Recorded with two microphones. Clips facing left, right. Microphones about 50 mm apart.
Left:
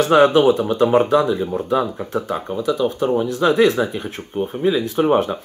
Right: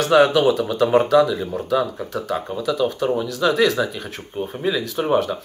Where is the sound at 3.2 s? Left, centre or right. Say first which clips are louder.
Left 4 dB; left.